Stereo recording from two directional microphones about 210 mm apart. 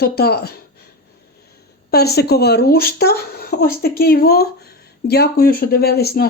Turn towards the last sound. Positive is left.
turn(degrees=50)  # may be behind; listen again after turning